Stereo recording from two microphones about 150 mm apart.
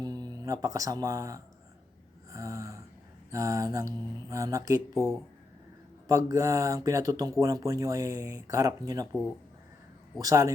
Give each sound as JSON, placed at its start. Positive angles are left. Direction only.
{"t": 0.0, "sound": "speech", "side_deg": -25}
{"t": 10.2, "sound": "speech", "side_deg": -20}